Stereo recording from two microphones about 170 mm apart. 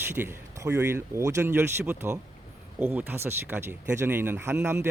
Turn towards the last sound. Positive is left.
turn(degrees=-15)  # may be behind; listen again after turning